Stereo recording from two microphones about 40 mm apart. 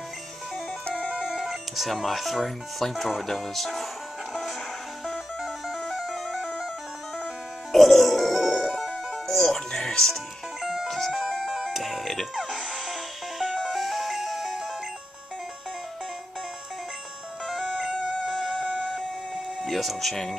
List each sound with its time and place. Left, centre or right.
0.8 s music: left
1.2 s speech: centre
5.0 s music: centre
7.7 s grunt: centre
8.7 s music: centre
10.6 s music: centre
10.9 s music: centre
17.5 s music: centre